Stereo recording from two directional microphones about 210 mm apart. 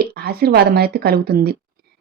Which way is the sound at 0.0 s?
45° right (ahead or behind).